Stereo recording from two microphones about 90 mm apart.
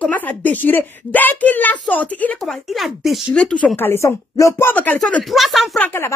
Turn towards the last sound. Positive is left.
turn(degrees=25)  # may be behind; listen again after turning